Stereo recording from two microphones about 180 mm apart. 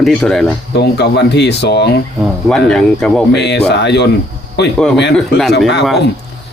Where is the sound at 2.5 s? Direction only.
5° left (ahead or behind).